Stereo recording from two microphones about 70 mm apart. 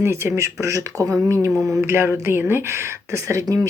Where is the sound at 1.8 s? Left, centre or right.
Right.